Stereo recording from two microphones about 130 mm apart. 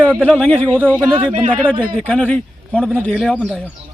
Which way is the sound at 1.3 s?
70° right (ahead or behind).